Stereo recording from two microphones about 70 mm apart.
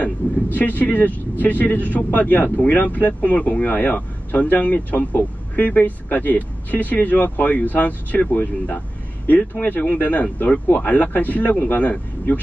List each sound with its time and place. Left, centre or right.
0.0 s speech: left